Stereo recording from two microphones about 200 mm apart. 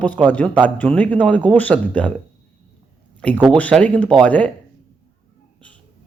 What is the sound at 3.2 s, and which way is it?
A man's voice, 5° left (ahead or behind).